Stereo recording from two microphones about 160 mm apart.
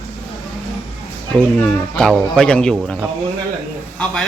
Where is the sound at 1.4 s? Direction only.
5° left (ahead or behind).